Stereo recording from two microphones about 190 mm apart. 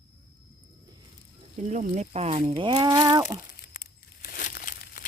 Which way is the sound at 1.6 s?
40° right (ahead or behind).